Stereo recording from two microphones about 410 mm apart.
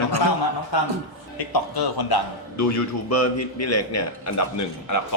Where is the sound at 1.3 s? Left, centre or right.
Left.